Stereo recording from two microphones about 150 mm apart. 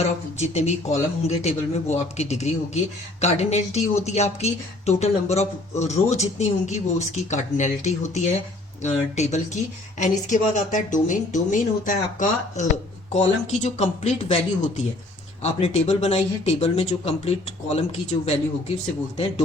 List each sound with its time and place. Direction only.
0.3 s a woman's voice: 45° left (ahead or behind)